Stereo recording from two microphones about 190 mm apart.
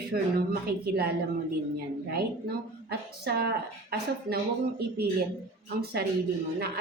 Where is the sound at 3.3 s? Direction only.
55° right (ahead or behind).